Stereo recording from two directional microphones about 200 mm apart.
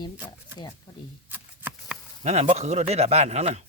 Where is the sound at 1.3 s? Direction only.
10° right (ahead or behind).